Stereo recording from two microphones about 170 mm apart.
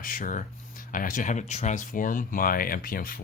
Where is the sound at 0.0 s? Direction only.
50° left (ahead or behind).